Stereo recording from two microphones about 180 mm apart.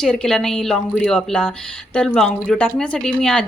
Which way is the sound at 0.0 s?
5° left (ahead or behind).